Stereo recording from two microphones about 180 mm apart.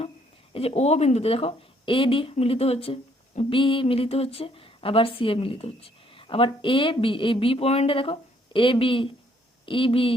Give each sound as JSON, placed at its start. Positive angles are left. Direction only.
{"t": 0.5, "sound": "speech", "side_deg": 35}